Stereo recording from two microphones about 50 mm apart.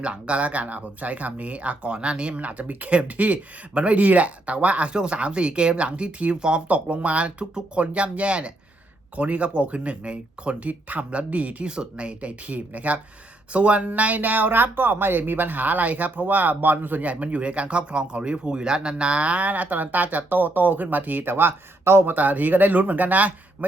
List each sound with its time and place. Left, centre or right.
0.0 s speech: right
21.8 s speech: right
22.1 s speech: right